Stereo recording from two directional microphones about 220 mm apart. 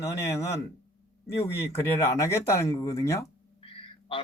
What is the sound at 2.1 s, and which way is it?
Speech, 15° left (ahead or behind).